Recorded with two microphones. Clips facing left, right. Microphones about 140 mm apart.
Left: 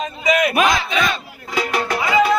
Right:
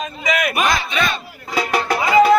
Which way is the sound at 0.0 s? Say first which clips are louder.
Left 3 dB; 30° left (ahead or behind).